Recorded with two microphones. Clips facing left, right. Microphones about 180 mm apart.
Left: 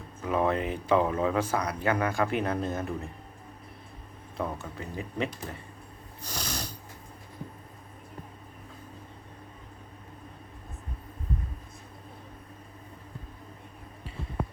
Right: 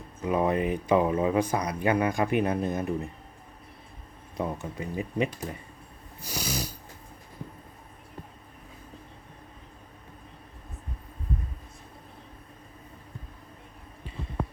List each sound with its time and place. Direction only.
0.2 s speech: 15° right (ahead or behind)
4.4 s speech: 15° right (ahead or behind)
6.2 s snoring: 10° right (ahead or behind)